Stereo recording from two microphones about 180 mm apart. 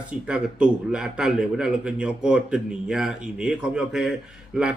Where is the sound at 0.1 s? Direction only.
5° right (ahead or behind).